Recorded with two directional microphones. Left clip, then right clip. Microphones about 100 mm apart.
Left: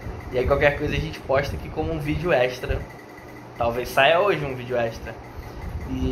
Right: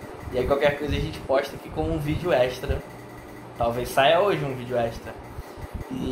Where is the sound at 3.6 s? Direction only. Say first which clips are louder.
Left 2 dB; 5° left (ahead or behind).